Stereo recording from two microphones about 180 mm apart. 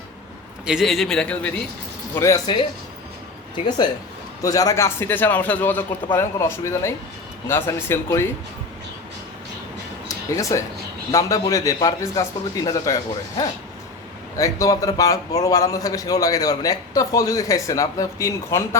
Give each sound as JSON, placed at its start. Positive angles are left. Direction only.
{"t": 0.6, "sound": "a man's voice", "side_deg": 0}
{"t": 2.1, "sound": "a man's voice", "side_deg": 20}
{"t": 10.1, "sound": "a sound", "side_deg": 20}
{"t": 11.1, "sound": "a man's voice", "side_deg": 20}